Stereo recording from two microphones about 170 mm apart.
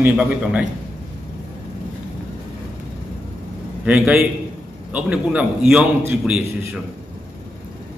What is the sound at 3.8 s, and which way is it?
A man's voice, 5° right (ahead or behind).